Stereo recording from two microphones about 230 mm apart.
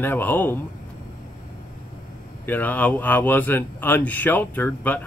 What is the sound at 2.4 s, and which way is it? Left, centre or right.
A man's voice, centre.